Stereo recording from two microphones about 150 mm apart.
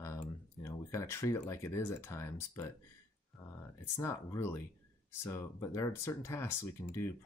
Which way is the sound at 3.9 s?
20° left (ahead or behind).